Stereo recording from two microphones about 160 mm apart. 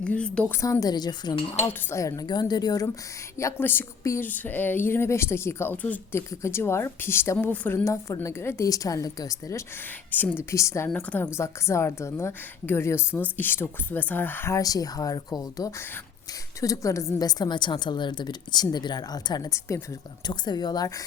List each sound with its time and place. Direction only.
0.0 s speech: 5° left (ahead or behind)
0.6 s a woman's voice: 20° left (ahead or behind)
10.8 s a woman's voice: 5° left (ahead or behind); by 20.9 s 25° left (ahead or behind)